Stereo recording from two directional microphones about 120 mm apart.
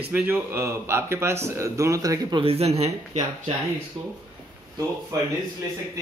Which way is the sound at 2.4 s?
60° right (ahead or behind).